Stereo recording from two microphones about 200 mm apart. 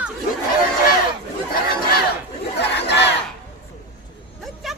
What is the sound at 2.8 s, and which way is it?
Battle cry, 60° left (ahead or behind).